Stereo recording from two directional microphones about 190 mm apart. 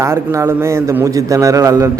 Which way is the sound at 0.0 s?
15° right (ahead or behind).